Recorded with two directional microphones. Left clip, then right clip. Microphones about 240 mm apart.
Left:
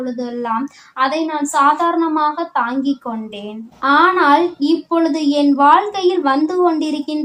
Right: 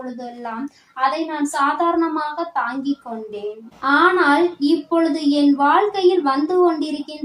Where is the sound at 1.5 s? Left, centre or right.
Left.